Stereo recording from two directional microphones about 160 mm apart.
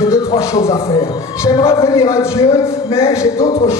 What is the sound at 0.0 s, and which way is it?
Music, 20° left (ahead or behind).